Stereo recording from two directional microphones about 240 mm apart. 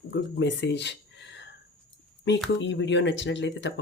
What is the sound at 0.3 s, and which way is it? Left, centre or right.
Speech, left.